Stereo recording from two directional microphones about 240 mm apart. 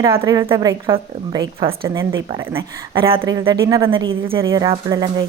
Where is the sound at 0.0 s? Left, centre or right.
Centre.